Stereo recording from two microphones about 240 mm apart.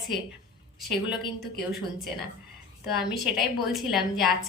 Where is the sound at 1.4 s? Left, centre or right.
Left.